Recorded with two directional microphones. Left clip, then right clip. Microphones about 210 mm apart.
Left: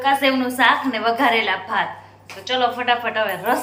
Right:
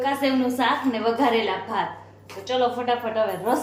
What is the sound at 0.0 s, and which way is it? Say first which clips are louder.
A woman's voice: left 5 dB; 5° right (ahead or behind).